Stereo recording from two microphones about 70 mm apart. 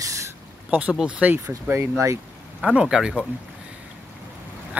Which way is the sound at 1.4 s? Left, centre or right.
Right.